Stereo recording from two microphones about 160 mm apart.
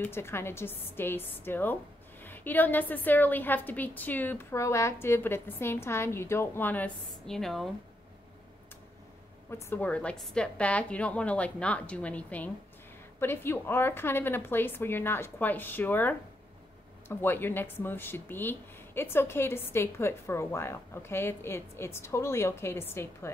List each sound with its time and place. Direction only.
0.0 s speech: 15° left (ahead or behind)
9.5 s speech: 15° left (ahead or behind)